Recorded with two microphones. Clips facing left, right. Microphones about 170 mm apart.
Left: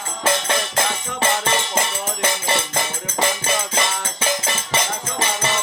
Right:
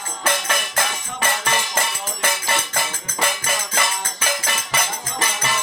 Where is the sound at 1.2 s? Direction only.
25° left (ahead or behind).